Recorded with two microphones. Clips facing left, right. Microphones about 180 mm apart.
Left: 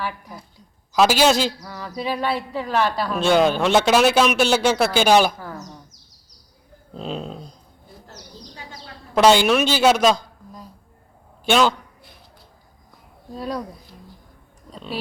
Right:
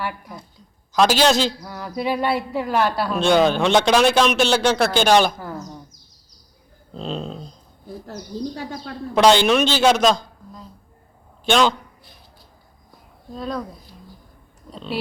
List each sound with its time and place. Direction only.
0.9 s a man's voice: 10° left (ahead or behind)
1.6 s a woman's voice: 10° right (ahead or behind)
3.1 s a man's voice: 5° left (ahead or behind)
5.4 s a woman's voice: 10° right (ahead or behind)
6.9 s a man's voice: 5° left (ahead or behind)
8.5 s a woman's voice: 55° right (ahead or behind)
9.1 s a woman's voice: 5° left (ahead or behind)
13.3 s a man's voice: 10° left (ahead or behind)